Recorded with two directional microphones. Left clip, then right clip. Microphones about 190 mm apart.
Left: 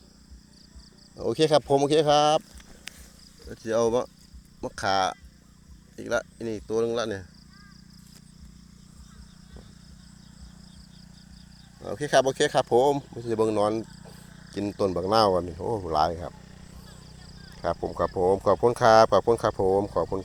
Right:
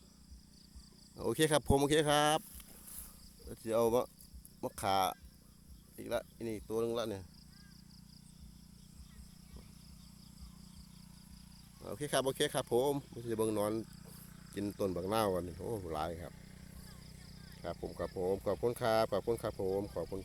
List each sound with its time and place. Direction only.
1.1 s speech: 20° right (ahead or behind)
3.5 s speech: 10° right (ahead or behind)
6.0 s speech: 5° left (ahead or behind)
11.8 s speech: centre (ahead or behind)
17.4 s speech: 10° left (ahead or behind)